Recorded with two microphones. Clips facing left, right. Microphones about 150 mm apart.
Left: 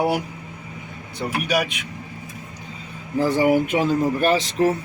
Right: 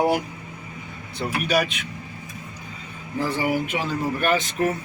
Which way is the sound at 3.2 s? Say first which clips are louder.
Left 6 dB; 40° left (ahead or behind).